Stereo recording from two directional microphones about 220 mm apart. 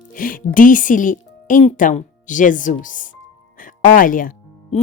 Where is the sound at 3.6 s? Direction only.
40° left (ahead or behind).